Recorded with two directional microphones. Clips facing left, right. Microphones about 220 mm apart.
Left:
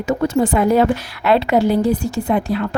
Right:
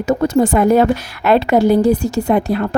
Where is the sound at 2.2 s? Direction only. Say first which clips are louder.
Right 3 dB; 60° right (ahead or behind).